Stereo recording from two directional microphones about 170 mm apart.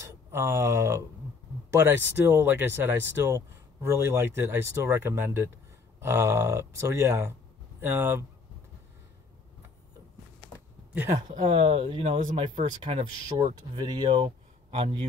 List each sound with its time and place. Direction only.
0.0 s speech: 15° right (ahead or behind)
11.2 s speech: 30° right (ahead or behind)